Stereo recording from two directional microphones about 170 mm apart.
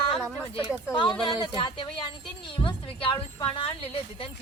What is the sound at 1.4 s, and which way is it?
A woman's voice, 25° left (ahead or behind).